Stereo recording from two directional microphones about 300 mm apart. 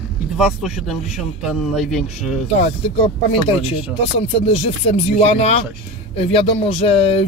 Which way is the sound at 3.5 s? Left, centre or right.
Centre.